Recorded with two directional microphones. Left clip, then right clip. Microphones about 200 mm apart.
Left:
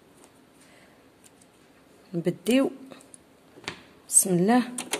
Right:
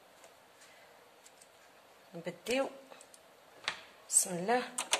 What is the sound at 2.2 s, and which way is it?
Speech, 55° left (ahead or behind).